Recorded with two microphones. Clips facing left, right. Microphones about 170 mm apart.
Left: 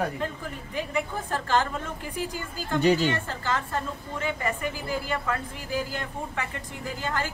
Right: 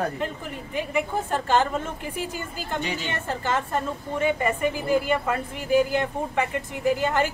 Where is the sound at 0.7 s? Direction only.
15° right (ahead or behind).